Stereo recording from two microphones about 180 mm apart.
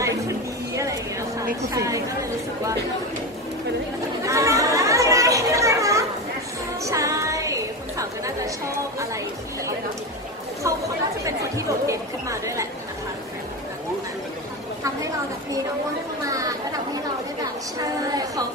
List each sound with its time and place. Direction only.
0.0 s a sound: 15° right (ahead or behind)
1.6 s speech: 15° right (ahead or behind)
4.2 s chatter: 15° right (ahead or behind)
6.8 s music: 15° right (ahead or behind)
11.2 s speech: 15° right (ahead or behind)
16.3 s a woman's voice: 20° right (ahead or behind)